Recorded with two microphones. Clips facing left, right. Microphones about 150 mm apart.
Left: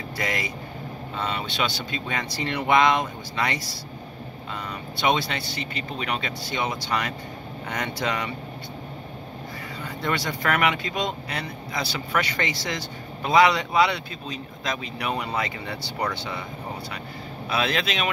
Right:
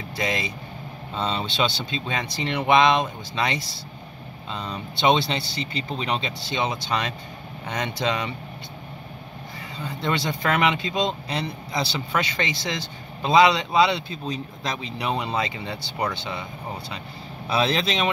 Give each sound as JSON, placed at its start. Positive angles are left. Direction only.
{"t": 0.2, "sound": "speech", "side_deg": -20}
{"t": 4.6, "sound": "speech", "side_deg": -25}
{"t": 10.0, "sound": "speech", "side_deg": -25}
{"t": 14.2, "sound": "speech", "side_deg": -35}
{"t": 17.5, "sound": "speech", "side_deg": -30}